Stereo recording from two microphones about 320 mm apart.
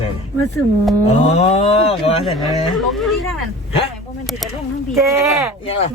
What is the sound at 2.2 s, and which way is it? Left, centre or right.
Speech, centre.